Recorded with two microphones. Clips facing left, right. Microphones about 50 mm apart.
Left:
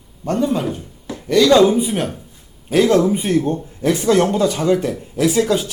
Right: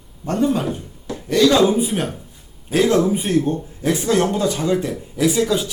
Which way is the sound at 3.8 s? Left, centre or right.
Left.